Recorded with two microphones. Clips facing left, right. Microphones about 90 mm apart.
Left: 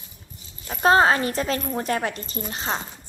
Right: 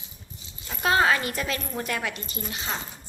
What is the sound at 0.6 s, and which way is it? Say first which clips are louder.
A woman's voice: left 5 dB; 35° left (ahead or behind).